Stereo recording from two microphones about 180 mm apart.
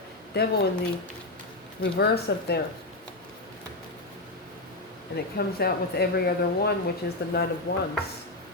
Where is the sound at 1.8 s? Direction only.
65° left (ahead or behind).